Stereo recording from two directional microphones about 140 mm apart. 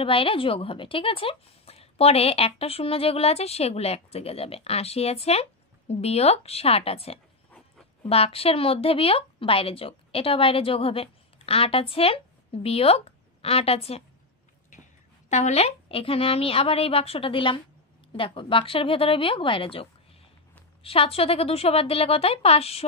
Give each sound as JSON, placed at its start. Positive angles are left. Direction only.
{"t": 0.0, "sound": "a woman's voice", "side_deg": 40}
{"t": 14.7, "sound": "a woman's voice", "side_deg": 60}